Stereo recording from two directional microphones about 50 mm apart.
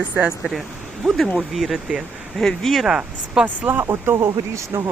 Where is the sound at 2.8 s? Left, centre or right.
Centre.